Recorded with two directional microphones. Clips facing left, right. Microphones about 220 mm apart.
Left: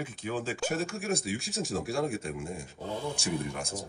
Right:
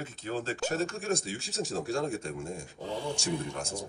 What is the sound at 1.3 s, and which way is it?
Speech, 15° left (ahead or behind).